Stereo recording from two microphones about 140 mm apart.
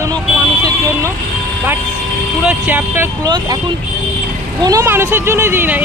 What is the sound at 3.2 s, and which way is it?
Speech, 30° right (ahead or behind).